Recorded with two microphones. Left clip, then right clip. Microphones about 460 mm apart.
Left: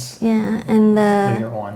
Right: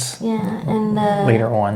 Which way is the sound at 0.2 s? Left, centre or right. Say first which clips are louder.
Left 6 dB; left.